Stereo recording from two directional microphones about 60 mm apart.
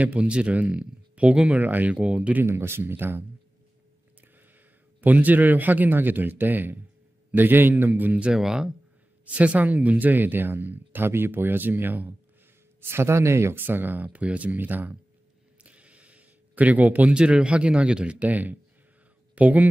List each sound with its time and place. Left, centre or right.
0.0 s a man's voice: right
1.5 s a man's voice: right
2.0 s a man's voice: centre
2.4 s speech: right
5.0 s a man's voice: right
8.3 s speech: centre
9.3 s speech: right
12.8 s speech: right
15.6 s a sound: right
17.1 s a man's voice: centre